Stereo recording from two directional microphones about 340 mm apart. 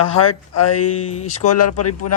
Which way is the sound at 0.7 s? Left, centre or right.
Left.